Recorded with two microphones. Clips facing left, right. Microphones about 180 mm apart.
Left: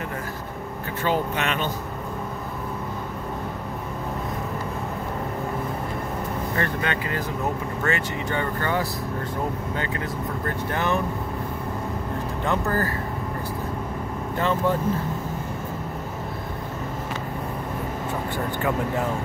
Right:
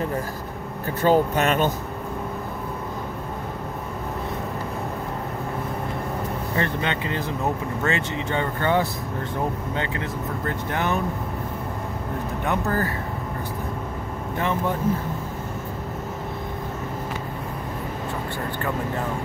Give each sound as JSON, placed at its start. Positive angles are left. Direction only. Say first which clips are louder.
{"t": 1.0, "sound": "speech", "louder": "right 6 dB", "side_deg": -40}
{"t": 6.6, "sound": "speech", "louder": "right 1 dB", "side_deg": -20}
{"t": 10.7, "sound": "speech", "louder": "left 1 dB", "side_deg": -15}
{"t": 12.4, "sound": "speech", "louder": "even", "side_deg": -20}